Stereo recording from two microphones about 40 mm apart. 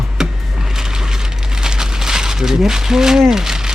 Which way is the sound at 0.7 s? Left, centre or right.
Centre.